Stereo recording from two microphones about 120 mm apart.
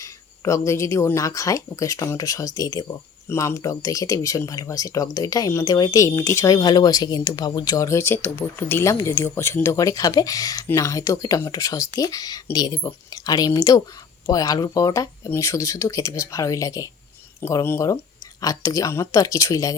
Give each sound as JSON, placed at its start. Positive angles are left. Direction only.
{"t": 0.0, "sound": "speech", "side_deg": 25}